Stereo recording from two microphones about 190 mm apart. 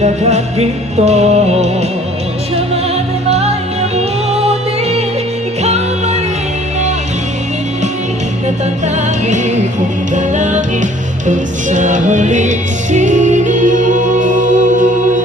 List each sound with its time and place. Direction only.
0.0 s music: 35° right (ahead or behind)
3.2 s music: 35° right (ahead or behind)
9.2 s music: 40° right (ahead or behind)